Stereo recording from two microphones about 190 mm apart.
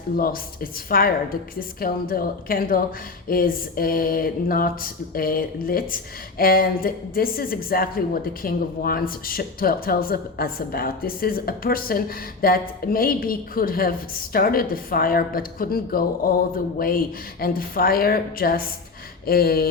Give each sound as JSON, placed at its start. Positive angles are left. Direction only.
{"t": 0.2, "sound": "a woman's voice", "side_deg": 50}